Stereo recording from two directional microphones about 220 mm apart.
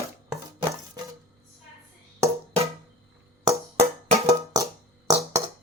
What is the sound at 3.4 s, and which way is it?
Music, 20° right (ahead or behind).